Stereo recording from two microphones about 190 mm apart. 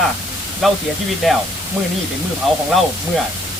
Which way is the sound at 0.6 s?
Centre (ahead or behind).